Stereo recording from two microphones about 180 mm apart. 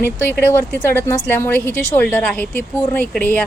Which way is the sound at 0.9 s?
15° left (ahead or behind).